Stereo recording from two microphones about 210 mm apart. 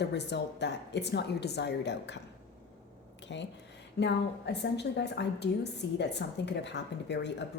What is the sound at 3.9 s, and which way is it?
A woman's voice, 55° left (ahead or behind).